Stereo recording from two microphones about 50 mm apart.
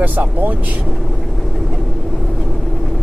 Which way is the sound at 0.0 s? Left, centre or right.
Right.